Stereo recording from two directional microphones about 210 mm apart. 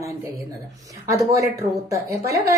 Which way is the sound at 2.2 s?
45° right (ahead or behind).